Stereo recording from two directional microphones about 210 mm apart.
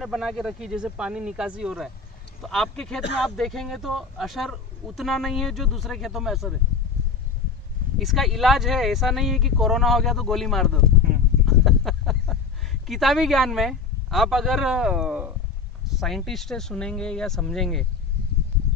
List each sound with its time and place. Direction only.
0.0 s speech: centre (ahead or behind)
8.0 s speech: centre (ahead or behind)
11.4 s a sound: centre (ahead or behind)
12.8 s speech: centre (ahead or behind)